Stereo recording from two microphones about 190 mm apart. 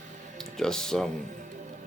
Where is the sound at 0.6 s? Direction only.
5° left (ahead or behind).